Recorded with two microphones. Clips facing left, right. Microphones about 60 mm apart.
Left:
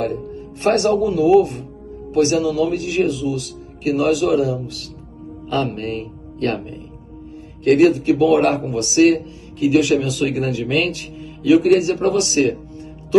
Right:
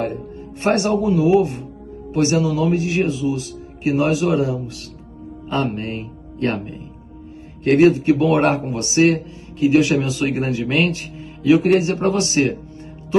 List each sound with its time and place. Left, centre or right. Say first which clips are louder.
0.0 s a man's voice: left 2 dB; right
5.5 s music: left 1 dB; right
7.6 s a man's voice: even; right